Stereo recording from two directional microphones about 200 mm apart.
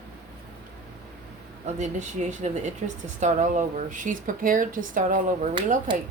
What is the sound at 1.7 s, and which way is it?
Speech, 35° right (ahead or behind).